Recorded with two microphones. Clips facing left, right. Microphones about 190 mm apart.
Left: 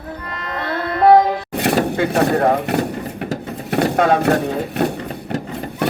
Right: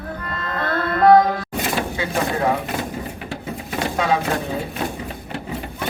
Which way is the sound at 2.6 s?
65° left (ahead or behind).